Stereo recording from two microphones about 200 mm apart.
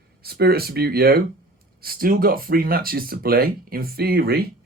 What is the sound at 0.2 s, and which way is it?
Speech, 50° right (ahead or behind).